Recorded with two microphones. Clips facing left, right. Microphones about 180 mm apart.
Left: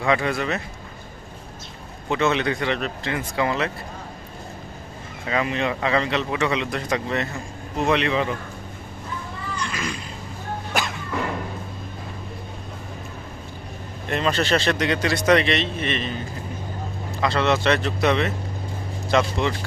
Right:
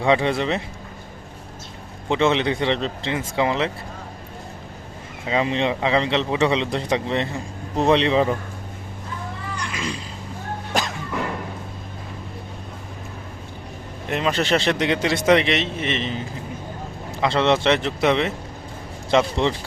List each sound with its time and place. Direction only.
0.0 s a man's voice: 25° right (ahead or behind)
2.0 s a man's voice: 25° right (ahead or behind)
5.3 s a man's voice: 25° right (ahead or behind)
9.7 s a sound: 25° right (ahead or behind)
14.1 s a man's voice: 15° right (ahead or behind)